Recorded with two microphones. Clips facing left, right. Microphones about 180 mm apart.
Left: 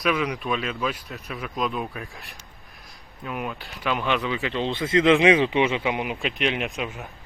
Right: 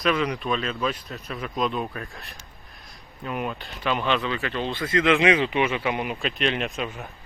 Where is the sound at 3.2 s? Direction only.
Centre (ahead or behind).